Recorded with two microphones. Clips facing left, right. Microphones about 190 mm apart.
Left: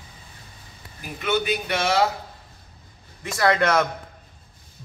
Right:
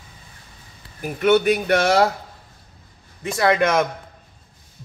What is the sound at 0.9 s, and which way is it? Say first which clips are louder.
Speech: right 8 dB; 50° right (ahead or behind).